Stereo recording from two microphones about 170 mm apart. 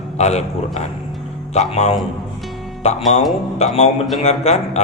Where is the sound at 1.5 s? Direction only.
40° left (ahead or behind).